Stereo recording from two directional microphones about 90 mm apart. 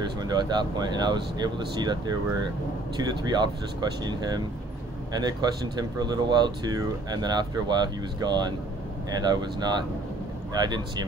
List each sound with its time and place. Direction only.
0.0 s speech: 50° right (ahead or behind)